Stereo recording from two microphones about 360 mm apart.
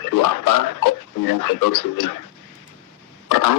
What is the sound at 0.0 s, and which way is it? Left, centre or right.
Speech, left.